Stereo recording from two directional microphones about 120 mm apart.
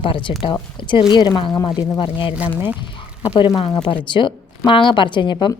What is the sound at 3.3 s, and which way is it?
A woman's voice, 45° left (ahead or behind).